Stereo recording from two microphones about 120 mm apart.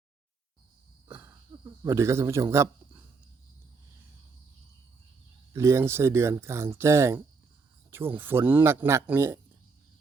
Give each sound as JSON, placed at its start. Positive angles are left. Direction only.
{"t": 1.0, "sound": "cricket", "side_deg": -20}
{"t": 1.8, "sound": "speech", "side_deg": -25}
{"t": 5.5, "sound": "speech", "side_deg": -20}